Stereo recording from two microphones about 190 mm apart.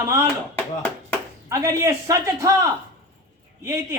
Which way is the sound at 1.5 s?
15° right (ahead or behind).